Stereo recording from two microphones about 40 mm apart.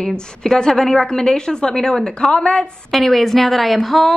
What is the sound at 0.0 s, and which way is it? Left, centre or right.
A woman's voice, centre.